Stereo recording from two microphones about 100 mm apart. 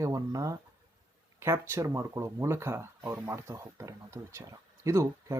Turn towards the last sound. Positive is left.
turn(degrees=-30)  # may be behind; listen again after turning